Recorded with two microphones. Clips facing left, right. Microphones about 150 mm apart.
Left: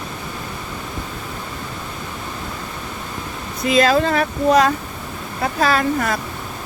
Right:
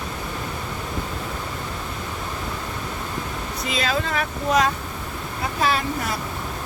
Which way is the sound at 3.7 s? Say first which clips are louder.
Left 9 dB; 40° left (ahead or behind).